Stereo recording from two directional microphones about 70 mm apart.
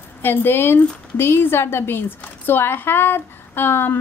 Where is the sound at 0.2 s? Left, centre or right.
Left.